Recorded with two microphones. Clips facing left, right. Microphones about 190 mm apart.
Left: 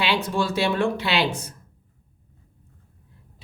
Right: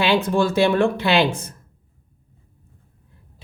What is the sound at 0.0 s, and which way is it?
A man's voice, 50° right (ahead or behind).